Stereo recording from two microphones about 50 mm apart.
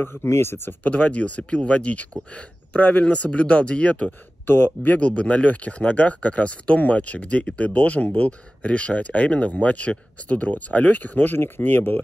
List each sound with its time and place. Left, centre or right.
0.0 s speech: left
0.8 s speech: left
4.5 s speech: left
4.8 s speech: left